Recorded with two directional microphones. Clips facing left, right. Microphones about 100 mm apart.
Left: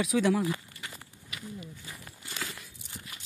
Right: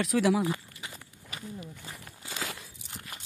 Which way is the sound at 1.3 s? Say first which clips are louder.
Right 1 dB; 35° right (ahead or behind).